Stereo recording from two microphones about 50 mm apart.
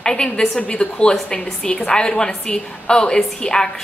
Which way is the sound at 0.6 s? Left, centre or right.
Left.